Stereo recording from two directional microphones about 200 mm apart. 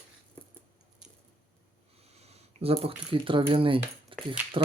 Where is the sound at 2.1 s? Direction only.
30° right (ahead or behind).